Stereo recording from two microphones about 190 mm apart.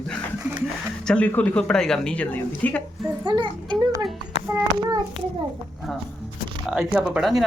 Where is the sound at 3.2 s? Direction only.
25° right (ahead or behind).